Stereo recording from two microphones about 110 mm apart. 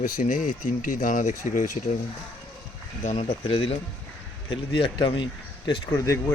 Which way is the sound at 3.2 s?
55° left (ahead or behind).